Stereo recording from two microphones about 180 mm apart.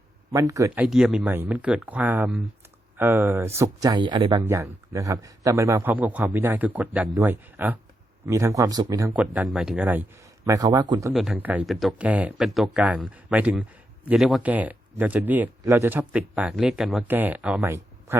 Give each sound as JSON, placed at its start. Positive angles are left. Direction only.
{"t": 0.3, "sound": "speech", "side_deg": -15}
{"t": 0.9, "sound": "speech", "side_deg": -5}
{"t": 9.1, "sound": "speech", "side_deg": -5}
{"t": 11.1, "sound": "speech", "side_deg": 0}